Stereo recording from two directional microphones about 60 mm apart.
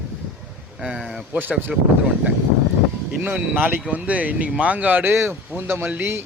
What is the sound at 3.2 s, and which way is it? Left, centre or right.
Speech, right.